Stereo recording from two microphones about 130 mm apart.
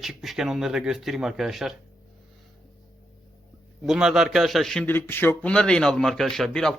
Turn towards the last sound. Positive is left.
turn(degrees=5)  # may be behind; listen again after turning